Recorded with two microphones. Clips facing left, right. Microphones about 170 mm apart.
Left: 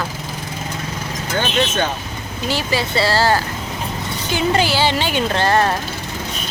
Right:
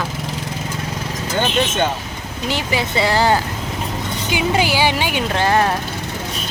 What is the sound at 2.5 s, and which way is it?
Speech, 20° right (ahead or behind).